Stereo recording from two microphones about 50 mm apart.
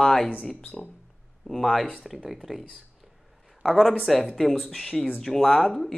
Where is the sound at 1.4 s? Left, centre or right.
Centre.